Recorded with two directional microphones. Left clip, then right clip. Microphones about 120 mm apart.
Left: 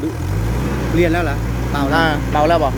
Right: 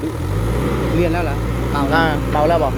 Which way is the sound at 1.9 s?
Centre (ahead or behind).